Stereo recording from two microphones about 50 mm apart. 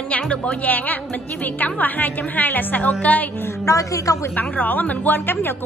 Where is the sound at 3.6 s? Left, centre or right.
Left.